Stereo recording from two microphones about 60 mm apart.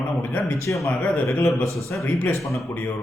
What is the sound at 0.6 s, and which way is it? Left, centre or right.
Speech, left.